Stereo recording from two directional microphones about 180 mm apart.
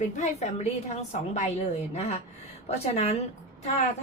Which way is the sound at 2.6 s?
35° left (ahead or behind).